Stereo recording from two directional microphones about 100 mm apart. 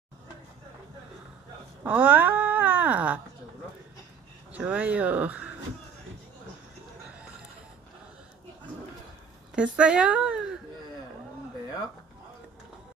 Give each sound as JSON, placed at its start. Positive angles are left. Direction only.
{"t": 1.8, "sound": "speech", "side_deg": -15}
{"t": 4.5, "sound": "speech", "side_deg": -15}
{"t": 9.6, "sound": "speech", "side_deg": -10}